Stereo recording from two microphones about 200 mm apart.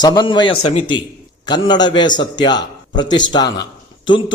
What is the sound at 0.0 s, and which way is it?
A man's voice, 20° left (ahead or behind).